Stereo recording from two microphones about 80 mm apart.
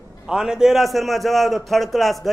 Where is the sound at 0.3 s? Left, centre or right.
Centre.